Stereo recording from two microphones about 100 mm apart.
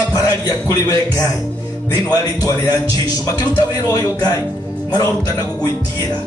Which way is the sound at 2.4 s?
40° left (ahead or behind).